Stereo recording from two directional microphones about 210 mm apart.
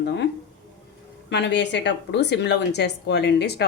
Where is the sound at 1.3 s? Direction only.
55° left (ahead or behind).